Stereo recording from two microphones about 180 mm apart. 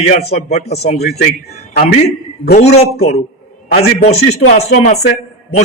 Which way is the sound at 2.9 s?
60° left (ahead or behind).